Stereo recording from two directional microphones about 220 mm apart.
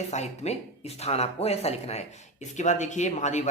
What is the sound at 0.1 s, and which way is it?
Speech, 30° left (ahead or behind).